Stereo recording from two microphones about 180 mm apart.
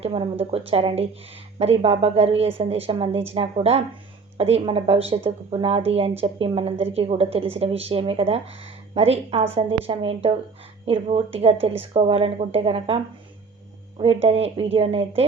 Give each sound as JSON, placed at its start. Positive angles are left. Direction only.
{"t": 0.0, "sound": "speech", "side_deg": -30}
{"t": 14.0, "sound": "speech", "side_deg": -35}